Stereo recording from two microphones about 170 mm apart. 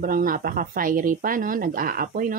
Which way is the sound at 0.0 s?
55° right (ahead or behind).